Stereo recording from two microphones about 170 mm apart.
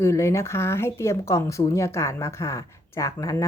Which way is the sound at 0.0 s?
15° left (ahead or behind).